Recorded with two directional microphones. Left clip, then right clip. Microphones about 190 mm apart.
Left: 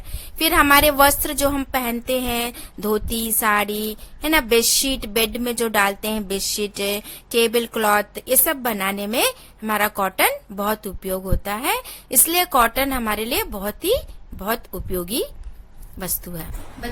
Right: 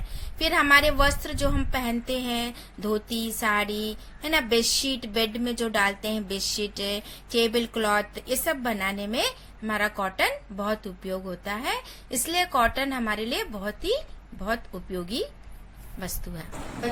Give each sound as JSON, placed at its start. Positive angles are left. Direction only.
{"t": 0.3, "sound": "a woman's voice", "side_deg": 55}